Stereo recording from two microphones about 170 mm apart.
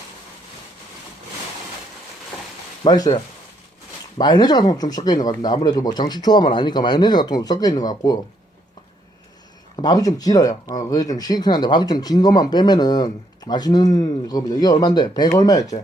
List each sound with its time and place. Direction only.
2.8 s speech: 25° left (ahead or behind)
9.7 s speech: 25° left (ahead or behind)